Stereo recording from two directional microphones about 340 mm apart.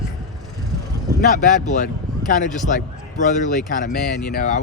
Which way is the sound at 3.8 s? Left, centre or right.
Left.